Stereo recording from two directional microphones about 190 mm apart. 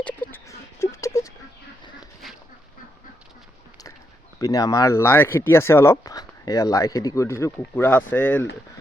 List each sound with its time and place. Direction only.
0.0 s a sound: 10° left (ahead or behind)
2.2 s dog: centre (ahead or behind)
4.4 s speech: 20° left (ahead or behind)